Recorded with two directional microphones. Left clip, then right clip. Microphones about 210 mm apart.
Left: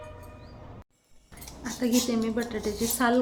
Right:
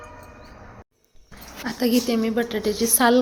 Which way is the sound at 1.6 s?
15° right (ahead or behind).